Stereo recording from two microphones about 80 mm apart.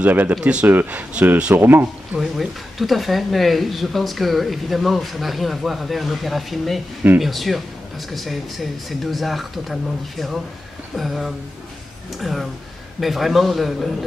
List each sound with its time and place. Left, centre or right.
0.0 s speech: right
2.1 s speech: centre